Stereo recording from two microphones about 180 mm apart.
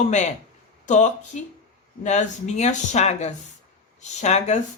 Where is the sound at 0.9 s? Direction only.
40° left (ahead or behind).